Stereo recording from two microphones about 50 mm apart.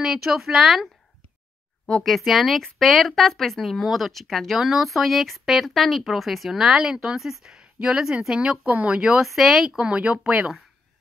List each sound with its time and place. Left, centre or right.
0.0 s speech: centre
2.0 s speech: centre
8.6 s speech: right
9.2 s speech: centre
9.8 s speech: right